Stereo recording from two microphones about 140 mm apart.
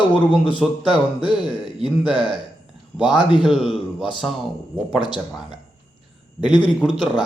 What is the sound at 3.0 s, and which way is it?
Speech, 35° left (ahead or behind).